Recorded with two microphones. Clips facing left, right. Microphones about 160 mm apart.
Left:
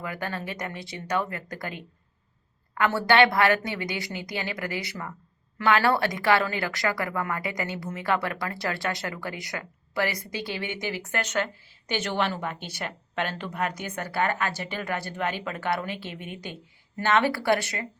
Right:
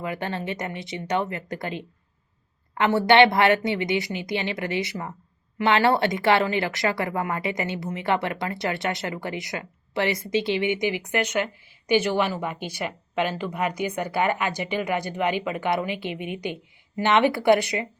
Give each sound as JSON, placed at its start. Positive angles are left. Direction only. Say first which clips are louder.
{"t": 0.0, "sound": "a woman's voice", "louder": "right 4 dB", "side_deg": -25}